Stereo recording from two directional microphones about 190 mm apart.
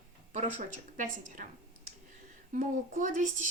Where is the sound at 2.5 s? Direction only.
45° right (ahead or behind).